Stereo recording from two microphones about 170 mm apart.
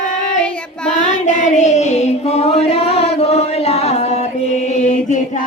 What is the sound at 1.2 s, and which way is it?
Child singing, 45° left (ahead or behind).